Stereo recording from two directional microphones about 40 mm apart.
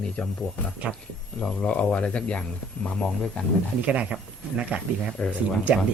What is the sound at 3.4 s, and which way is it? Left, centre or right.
Speech, left.